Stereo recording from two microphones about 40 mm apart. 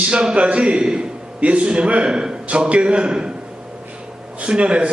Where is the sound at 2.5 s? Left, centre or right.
Right.